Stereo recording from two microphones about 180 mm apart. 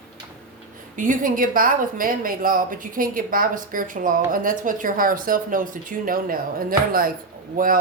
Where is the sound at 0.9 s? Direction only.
45° right (ahead or behind).